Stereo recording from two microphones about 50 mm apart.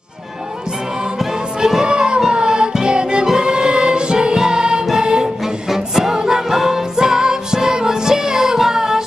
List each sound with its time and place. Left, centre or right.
1.0 s music: centre